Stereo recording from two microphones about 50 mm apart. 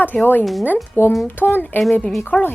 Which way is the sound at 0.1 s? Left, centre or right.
Left.